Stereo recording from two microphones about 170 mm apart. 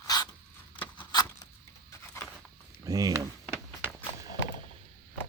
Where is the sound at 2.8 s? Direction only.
20° right (ahead or behind).